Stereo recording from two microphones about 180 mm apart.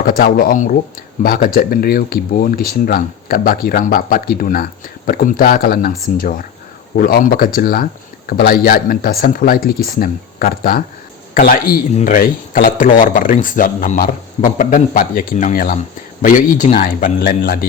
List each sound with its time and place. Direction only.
0.0 s speech: 55° left (ahead or behind)